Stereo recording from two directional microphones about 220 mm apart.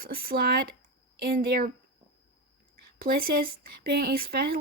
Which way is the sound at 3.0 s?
40° right (ahead or behind).